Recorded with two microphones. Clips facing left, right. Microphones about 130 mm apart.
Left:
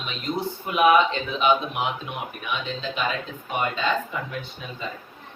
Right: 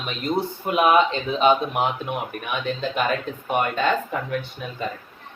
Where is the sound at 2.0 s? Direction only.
55° right (ahead or behind).